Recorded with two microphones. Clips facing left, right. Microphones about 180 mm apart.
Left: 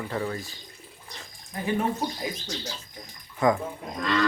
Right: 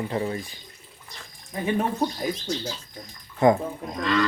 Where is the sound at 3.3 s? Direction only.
30° right (ahead or behind).